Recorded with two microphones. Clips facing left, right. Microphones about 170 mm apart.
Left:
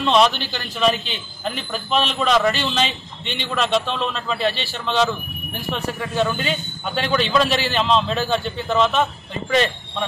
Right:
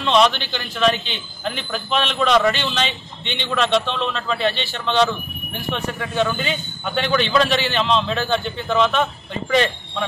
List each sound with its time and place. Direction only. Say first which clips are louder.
0.0 s a man's voice: even; centre (ahead or behind)